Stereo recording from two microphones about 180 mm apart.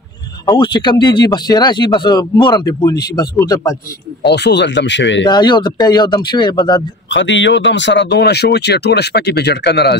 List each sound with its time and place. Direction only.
0.5 s speech: 25° left (ahead or behind)
4.3 s speech: 70° left (ahead or behind); by 5.2 s 85° left
5.2 s speech: 25° left (ahead or behind)
7.1 s speech: 90° left; by 9.9 s 65° left (ahead or behind)